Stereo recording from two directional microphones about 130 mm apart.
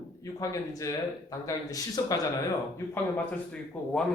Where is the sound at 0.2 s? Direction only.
25° left (ahead or behind).